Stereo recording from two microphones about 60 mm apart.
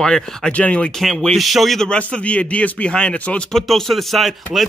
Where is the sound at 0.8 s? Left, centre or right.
Centre.